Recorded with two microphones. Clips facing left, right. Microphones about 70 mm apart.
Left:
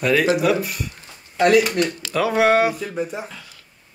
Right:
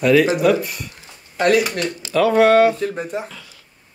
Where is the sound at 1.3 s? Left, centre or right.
Right.